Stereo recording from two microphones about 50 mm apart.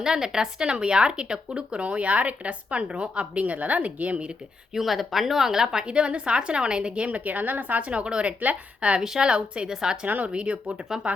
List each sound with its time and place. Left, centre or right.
0.0 s speech: centre
4.7 s speech: centre; by 9.0 s right
9.0 s speech: centre
10.1 s speech: right